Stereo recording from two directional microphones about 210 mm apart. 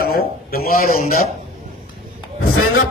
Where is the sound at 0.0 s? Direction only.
45° left (ahead or behind).